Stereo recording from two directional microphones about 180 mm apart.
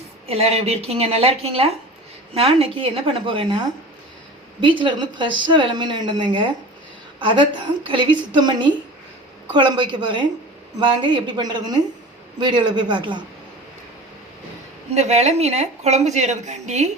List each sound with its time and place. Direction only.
0.3 s a woman's voice: 35° right (ahead or behind)
4.6 s speech: 25° right (ahead or behind)
14.9 s a woman's voice: 40° right (ahead or behind)